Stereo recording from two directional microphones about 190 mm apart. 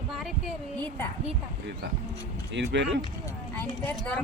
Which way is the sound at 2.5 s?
70° right (ahead or behind).